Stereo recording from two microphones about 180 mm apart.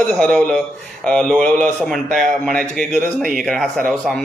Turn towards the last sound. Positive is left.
turn(degrees=5)  # may be behind; listen again after turning